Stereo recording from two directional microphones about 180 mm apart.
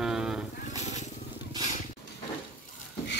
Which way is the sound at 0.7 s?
40° left (ahead or behind).